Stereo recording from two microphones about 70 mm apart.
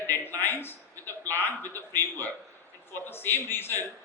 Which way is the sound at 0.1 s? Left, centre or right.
Left.